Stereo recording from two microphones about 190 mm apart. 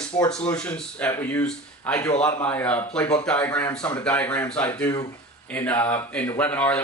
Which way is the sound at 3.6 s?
15° left (ahead or behind).